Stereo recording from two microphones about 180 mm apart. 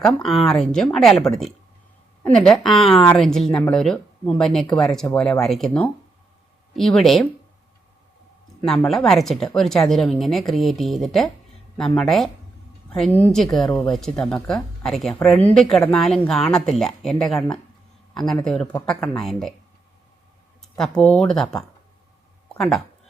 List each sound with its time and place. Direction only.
0.2 s speech: centre (ahead or behind)
8.6 s speech: centre (ahead or behind)
13.7 s speech: 20° left (ahead or behind)
13.9 s a man's voice: 5° left (ahead or behind)
20.7 s speech: 5° left (ahead or behind)
22.4 s a sound: centre (ahead or behind)